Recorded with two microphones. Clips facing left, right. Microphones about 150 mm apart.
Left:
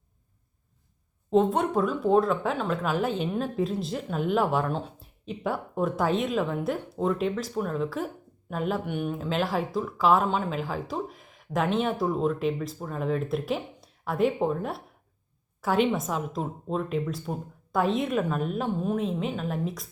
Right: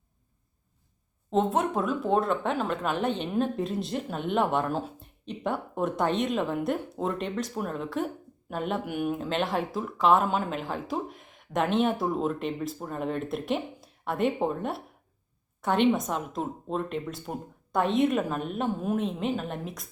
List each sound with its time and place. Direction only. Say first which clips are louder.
1.3 s speech: left 3 dB; centre (ahead or behind)